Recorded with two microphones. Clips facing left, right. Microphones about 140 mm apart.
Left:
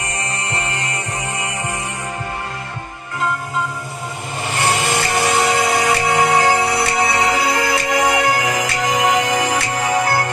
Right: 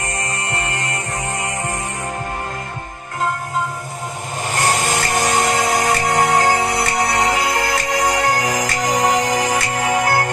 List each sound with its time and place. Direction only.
4.5 s music: 40° right (ahead or behind)